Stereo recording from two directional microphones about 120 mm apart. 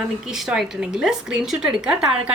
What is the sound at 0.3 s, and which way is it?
A woman's voice, 5° right (ahead or behind).